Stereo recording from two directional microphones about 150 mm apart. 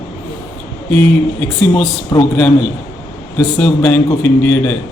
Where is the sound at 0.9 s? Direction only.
10° left (ahead or behind).